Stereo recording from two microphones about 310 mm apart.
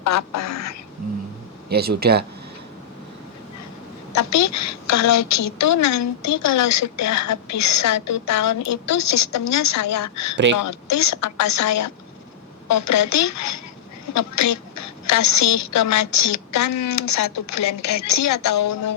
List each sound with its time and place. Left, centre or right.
0.0 s speech: left
1.7 s speech: right
4.1 s a woman's voice: left